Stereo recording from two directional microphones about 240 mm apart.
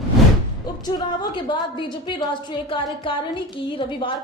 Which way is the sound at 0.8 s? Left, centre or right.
Centre.